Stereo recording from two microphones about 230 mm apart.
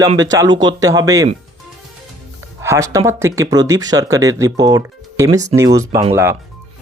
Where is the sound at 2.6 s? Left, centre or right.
Centre.